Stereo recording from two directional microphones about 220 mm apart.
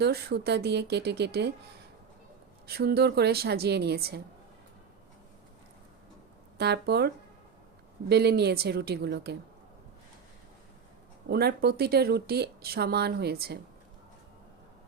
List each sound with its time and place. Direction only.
0.0 s speech: 50° right (ahead or behind)
2.6 s speech: 45° right (ahead or behind)
6.6 s speech: 50° right (ahead or behind)
8.1 s speech: 50° right (ahead or behind)
11.3 s speech: 45° right (ahead or behind)